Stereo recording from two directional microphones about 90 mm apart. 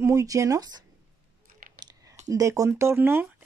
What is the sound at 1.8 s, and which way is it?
Speech, 40° right (ahead or behind).